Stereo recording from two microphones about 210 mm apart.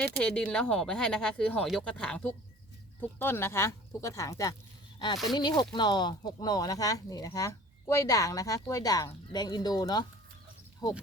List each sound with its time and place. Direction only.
0.0 s speech: 5° left (ahead or behind)